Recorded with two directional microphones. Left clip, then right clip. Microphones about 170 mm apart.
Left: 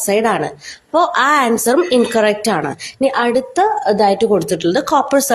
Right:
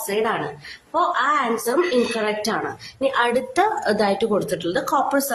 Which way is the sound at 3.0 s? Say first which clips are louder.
Left 5 dB; 30° left (ahead or behind).